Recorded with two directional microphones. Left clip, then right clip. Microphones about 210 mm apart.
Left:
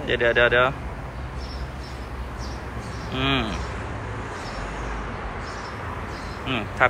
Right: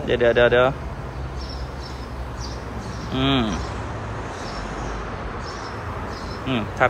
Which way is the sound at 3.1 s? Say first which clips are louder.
Right 2 dB; 15° right (ahead or behind).